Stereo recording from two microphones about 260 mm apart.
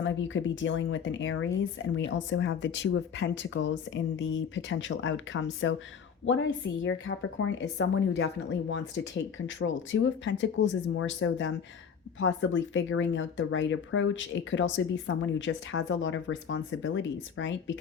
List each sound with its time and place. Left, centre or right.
0.0 s speech: left
6.8 s speech: left